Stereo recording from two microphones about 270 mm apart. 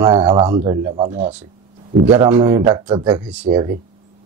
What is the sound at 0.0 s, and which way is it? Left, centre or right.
Speech, centre.